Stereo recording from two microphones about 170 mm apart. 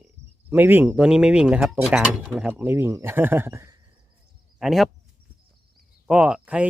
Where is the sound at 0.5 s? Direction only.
10° right (ahead or behind).